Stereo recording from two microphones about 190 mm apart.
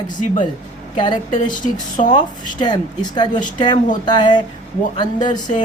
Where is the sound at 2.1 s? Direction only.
25° left (ahead or behind).